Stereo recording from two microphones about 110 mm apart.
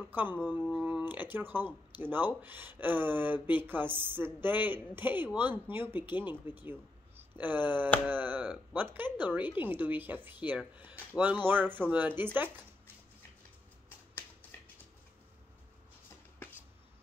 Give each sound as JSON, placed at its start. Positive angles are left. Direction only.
{"t": 0.1, "sound": "a woman's voice", "side_deg": -15}